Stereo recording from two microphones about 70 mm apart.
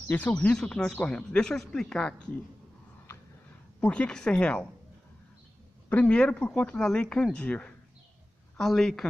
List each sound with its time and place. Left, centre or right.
0.3 s speech: centre
3.8 s speech: centre
5.9 s speech: centre
8.5 s speech: centre